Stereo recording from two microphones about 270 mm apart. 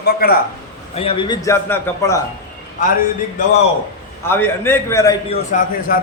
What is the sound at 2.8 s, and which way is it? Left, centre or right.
Speech, left.